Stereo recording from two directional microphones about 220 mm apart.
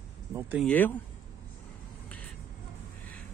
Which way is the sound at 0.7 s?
10° left (ahead or behind).